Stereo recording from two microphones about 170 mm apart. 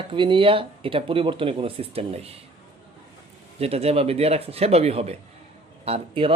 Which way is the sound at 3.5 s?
35° right (ahead or behind).